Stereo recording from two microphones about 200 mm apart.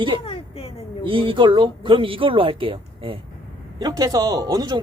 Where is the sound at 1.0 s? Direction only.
25° right (ahead or behind).